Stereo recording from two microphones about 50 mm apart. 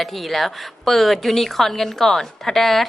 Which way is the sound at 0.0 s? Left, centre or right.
Centre.